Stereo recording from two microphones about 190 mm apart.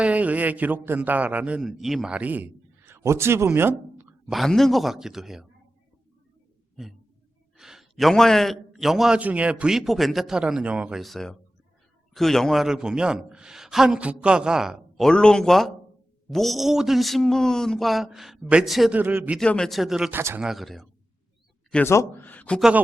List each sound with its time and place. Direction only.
0.0 s a man's voice: 5° right (ahead or behind)
7.5 s a man's voice: centre (ahead or behind)
19.4 s a man's voice: 5° left (ahead or behind)
21.7 s speech: 10° left (ahead or behind)